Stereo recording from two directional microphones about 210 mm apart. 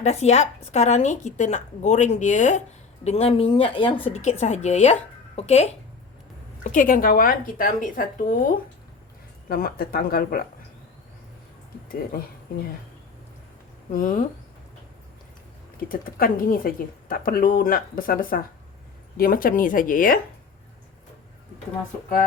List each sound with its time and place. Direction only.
0.0 s speech: 30° left (ahead or behind)
9.5 s speech: 45° left (ahead or behind)
13.9 s speech: 40° left (ahead or behind)
15.8 s speech: 40° left (ahead or behind)